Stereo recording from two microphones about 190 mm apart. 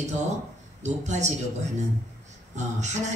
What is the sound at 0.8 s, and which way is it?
Speech, 40° right (ahead or behind).